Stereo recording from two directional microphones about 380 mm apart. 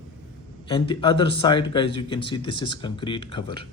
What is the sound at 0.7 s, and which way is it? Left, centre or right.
Speech, centre.